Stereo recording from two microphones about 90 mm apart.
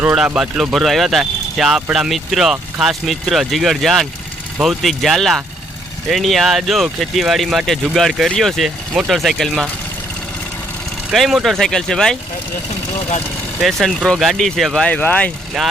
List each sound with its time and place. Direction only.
0.3 s speech: 5° right (ahead or behind)
11.1 s speech: centre (ahead or behind)
13.6 s speech: centre (ahead or behind)
14.8 s speech: 15° left (ahead or behind)